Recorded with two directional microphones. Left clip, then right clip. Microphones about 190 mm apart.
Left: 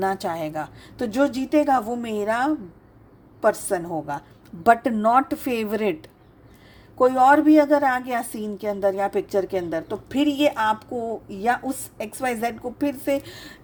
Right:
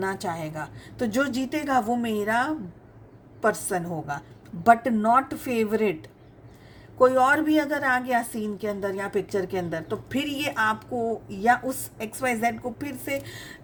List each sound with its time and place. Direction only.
0.0 s a woman's voice: 45° left (ahead or behind)